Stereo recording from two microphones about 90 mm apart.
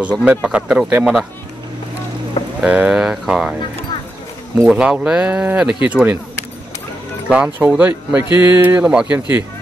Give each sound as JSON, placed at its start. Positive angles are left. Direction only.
{"t": 0.2, "sound": "speech", "side_deg": -15}
{"t": 2.6, "sound": "speech", "side_deg": -10}
{"t": 4.6, "sound": "speech", "side_deg": -10}
{"t": 7.2, "sound": "speech", "side_deg": -15}